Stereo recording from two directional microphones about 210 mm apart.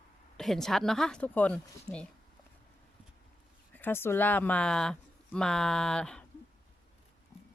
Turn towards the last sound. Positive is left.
turn(degrees=5)  # may be behind; listen again after turning